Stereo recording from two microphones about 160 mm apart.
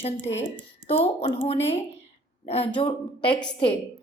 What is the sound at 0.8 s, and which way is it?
A woman's voice, 40° left (ahead or behind).